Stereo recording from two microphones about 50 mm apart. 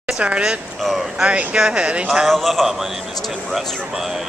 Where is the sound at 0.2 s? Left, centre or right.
Right.